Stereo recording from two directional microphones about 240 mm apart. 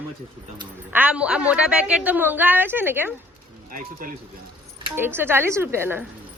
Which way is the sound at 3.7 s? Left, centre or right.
Right.